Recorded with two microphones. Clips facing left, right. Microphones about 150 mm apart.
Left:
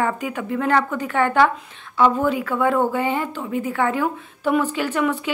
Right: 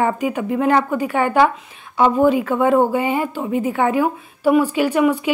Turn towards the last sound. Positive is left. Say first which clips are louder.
# right 5 dB
turn(degrees=-10)  # may be behind; listen again after turning